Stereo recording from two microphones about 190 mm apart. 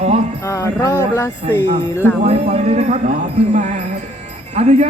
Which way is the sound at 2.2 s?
35° right (ahead or behind).